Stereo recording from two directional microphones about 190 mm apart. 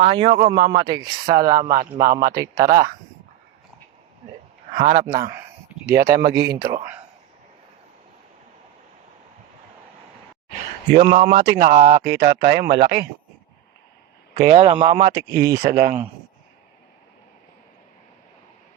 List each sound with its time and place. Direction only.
0.0 s speech: 25° right (ahead or behind)
4.7 s speech: 45° right (ahead or behind)
6.3 s speech: 20° right (ahead or behind)
10.9 s a man's voice: 40° right (ahead or behind); by 12.8 s 60° right (ahead or behind)
14.5 s speech: 35° right (ahead or behind)
15.2 s speech: 15° right (ahead or behind)
15.5 s speech: 50° right (ahead or behind)